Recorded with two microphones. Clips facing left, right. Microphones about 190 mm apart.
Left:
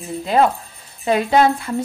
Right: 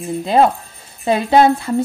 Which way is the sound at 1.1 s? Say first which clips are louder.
Right 3 dB; 30° right (ahead or behind).